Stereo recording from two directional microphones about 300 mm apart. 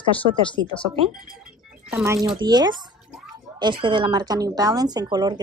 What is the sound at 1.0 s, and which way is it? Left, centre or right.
A woman's voice, centre.